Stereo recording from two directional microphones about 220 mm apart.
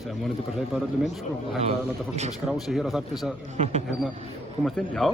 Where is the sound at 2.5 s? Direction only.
Centre (ahead or behind).